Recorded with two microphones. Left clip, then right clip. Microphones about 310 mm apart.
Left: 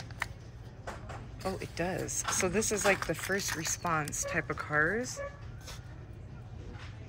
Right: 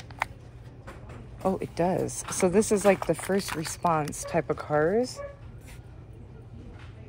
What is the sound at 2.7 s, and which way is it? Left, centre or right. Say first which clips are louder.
Speech: right 6 dB; right.